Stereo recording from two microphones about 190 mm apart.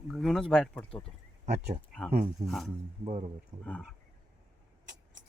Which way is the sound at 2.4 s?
40° right (ahead or behind).